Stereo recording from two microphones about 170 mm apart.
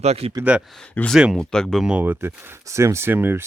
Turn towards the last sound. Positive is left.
turn(degrees=-10)  # may be behind; listen again after turning